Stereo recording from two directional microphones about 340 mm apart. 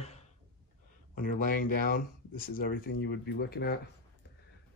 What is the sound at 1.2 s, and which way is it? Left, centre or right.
Speech, left.